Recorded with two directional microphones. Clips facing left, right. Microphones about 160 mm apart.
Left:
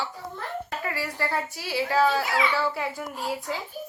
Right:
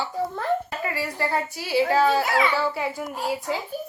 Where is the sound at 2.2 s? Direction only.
55° right (ahead or behind).